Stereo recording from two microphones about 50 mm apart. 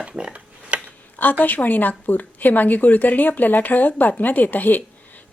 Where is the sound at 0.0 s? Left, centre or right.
Centre.